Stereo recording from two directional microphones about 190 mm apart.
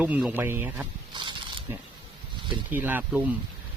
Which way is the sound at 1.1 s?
25° right (ahead or behind).